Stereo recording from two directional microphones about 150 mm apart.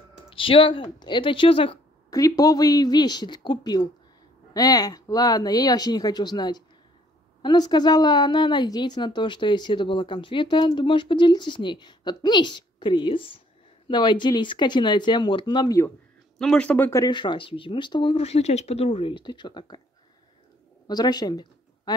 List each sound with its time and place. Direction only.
0.3 s a woman's voice: 35° left (ahead or behind)
2.0 s a woman's voice: 25° left (ahead or behind)
16.3 s speech: 5° left (ahead or behind)
17.0 s a woman's voice: 30° left (ahead or behind)
20.8 s a sound: 25° left (ahead or behind)